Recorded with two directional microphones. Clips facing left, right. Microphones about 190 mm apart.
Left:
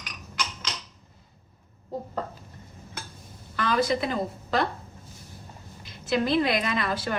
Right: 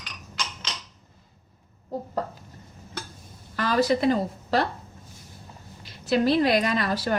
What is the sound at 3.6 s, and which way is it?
A woman's voice, 40° right (ahead or behind).